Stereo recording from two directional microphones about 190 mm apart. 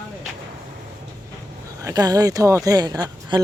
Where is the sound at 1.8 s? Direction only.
20° right (ahead or behind).